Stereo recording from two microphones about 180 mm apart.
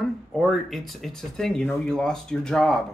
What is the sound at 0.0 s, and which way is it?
Speech, centre (ahead or behind).